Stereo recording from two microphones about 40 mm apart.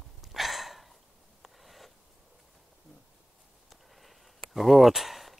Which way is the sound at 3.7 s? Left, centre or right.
Centre.